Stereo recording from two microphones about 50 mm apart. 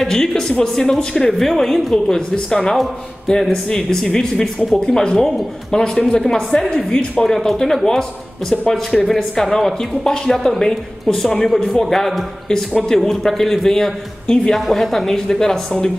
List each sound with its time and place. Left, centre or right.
0.0 s a man's voice: centre
12.7 s a man's voice: centre